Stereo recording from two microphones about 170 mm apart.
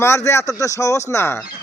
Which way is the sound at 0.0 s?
15° left (ahead or behind).